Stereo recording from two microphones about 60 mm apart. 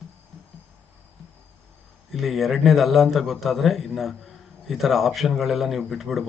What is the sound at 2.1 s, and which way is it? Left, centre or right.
Speech, centre.